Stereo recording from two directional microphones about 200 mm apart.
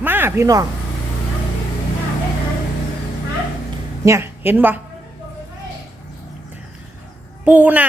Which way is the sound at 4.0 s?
15° right (ahead or behind).